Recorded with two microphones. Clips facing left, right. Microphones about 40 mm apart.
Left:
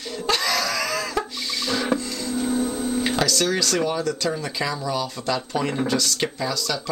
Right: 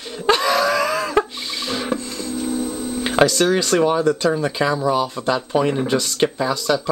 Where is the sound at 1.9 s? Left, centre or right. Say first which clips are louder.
Even; centre.